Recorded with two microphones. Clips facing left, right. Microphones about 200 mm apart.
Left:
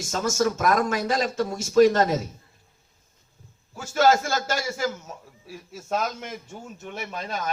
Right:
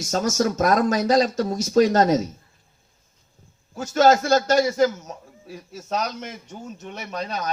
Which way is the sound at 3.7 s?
40° right (ahead or behind).